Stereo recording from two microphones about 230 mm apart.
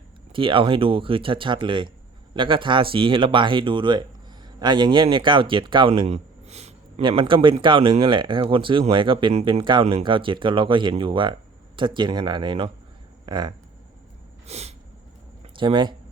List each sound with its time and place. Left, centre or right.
0.3 s speech: right
14.4 s a sound: right
15.5 s speech: centre